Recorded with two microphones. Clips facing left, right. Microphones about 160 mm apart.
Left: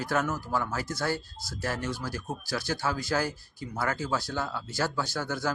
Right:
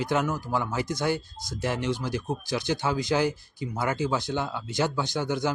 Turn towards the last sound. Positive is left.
turn(degrees=-20)  # may be behind; listen again after turning